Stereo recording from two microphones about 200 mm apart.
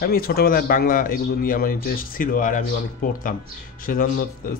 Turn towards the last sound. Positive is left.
turn(degrees=45)  # may be behind; listen again after turning